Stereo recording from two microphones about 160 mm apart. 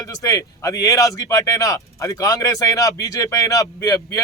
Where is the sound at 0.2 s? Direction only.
20° left (ahead or behind).